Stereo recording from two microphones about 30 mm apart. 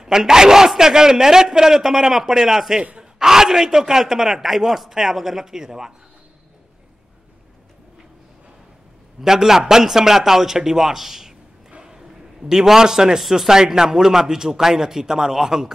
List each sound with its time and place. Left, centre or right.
0.0 s a man's voice: centre
9.2 s a man's voice: centre
11.8 s a sound: right
12.4 s a man's voice: centre
13.2 s a man's voice: centre